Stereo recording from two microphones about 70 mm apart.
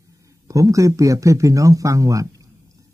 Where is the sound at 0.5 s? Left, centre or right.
Right.